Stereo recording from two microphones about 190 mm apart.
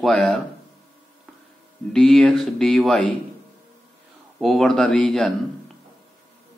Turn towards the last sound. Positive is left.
turn(degrees=5)  # may be behind; listen again after turning